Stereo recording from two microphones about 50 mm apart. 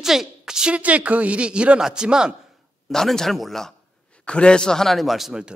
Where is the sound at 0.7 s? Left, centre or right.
Right.